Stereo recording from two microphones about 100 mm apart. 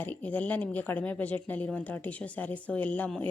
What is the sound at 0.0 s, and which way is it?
Speech, 15° left (ahead or behind).